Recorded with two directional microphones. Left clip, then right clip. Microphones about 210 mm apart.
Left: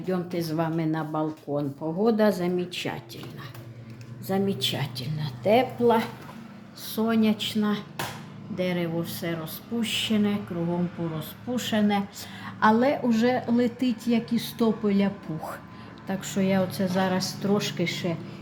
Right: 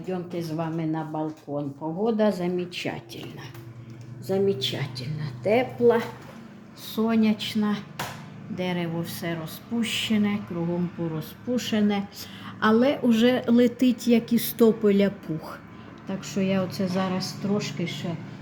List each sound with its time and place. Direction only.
0.1 s speech: 15° left (ahead or behind)
4.3 s a woman's voice: centre (ahead or behind)
16.0 s speech: 10° left (ahead or behind)
17.5 s speech: 15° left (ahead or behind)